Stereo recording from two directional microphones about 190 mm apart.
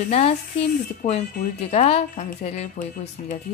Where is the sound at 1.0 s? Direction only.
40° left (ahead or behind).